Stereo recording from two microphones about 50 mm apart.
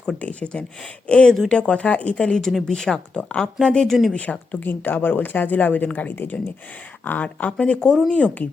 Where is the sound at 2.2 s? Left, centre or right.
Centre.